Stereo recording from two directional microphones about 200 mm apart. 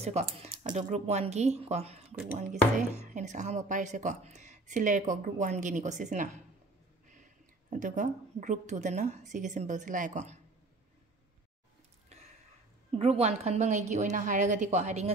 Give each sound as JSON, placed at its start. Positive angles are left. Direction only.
{"t": 0.0, "sound": "a woman's voice", "side_deg": -30}
{"t": 7.7, "sound": "a woman's voice", "side_deg": -40}
{"t": 12.9, "sound": "a woman's voice", "side_deg": -30}